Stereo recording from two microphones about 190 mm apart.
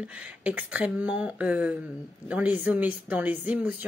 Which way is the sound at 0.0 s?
5° right (ahead or behind).